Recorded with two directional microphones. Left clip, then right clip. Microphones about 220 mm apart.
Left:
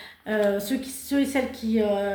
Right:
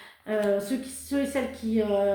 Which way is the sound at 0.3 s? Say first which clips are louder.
Left 2 dB; 45° left (ahead or behind).